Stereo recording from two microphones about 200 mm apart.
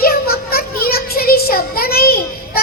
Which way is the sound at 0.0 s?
50° left (ahead or behind).